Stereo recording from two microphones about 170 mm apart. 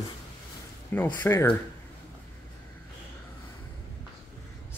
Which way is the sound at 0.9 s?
10° left (ahead or behind).